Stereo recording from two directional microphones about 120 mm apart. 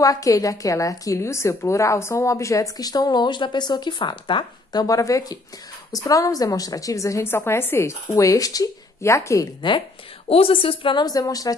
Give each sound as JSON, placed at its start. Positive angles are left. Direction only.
{"t": 0.0, "sound": "a woman's voice", "side_deg": 30}
{"t": 4.8, "sound": "a woman's voice", "side_deg": 30}
{"t": 9.6, "sound": "a woman's voice", "side_deg": 40}